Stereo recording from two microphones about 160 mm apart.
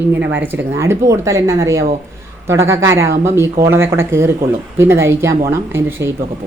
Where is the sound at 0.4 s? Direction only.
15° right (ahead or behind).